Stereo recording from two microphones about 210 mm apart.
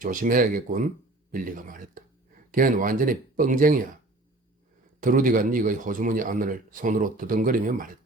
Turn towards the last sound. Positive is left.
turn(degrees=-40)  # may be behind; listen again after turning